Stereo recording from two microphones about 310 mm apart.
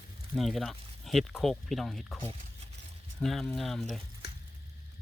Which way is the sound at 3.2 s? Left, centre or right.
Centre.